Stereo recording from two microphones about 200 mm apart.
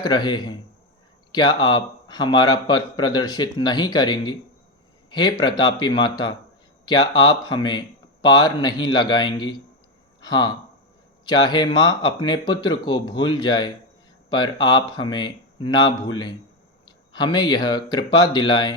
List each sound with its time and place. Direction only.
0.0 s a man's voice: 20° left (ahead or behind)
17.1 s a man's voice: 25° left (ahead or behind)